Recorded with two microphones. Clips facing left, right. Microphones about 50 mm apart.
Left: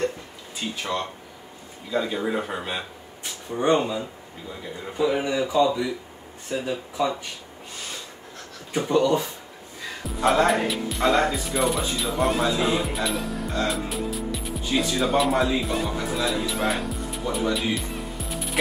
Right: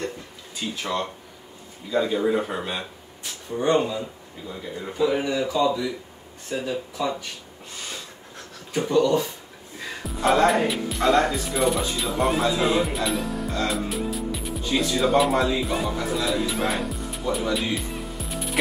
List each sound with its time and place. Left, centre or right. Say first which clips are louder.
0.6 s speech: right 1 dB; centre
5.5 s speech: left 3 dB; centre
8.7 s speech: right 1 dB; centre
10.0 s speech: right 1 dB; centre